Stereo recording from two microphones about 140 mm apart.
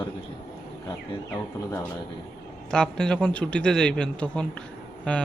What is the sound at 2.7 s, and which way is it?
A man's voice, 5° left (ahead or behind).